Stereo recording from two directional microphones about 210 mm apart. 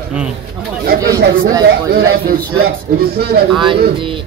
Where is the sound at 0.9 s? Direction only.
15° right (ahead or behind).